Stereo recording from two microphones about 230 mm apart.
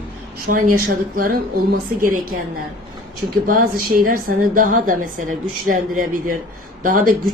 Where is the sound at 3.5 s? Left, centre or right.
Right.